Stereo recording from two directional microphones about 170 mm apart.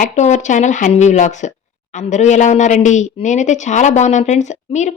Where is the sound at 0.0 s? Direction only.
45° left (ahead or behind).